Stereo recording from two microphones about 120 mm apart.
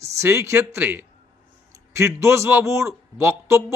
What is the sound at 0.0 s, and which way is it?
A man's voice, 25° right (ahead or behind).